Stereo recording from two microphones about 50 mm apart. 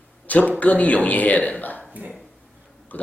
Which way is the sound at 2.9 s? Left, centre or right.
Left.